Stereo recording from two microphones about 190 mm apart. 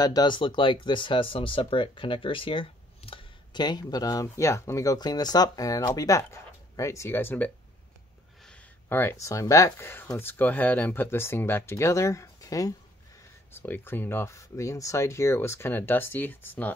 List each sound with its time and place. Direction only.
0.0 s speech: 20° left (ahead or behind)